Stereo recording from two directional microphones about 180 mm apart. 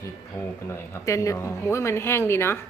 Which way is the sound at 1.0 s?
15° left (ahead or behind).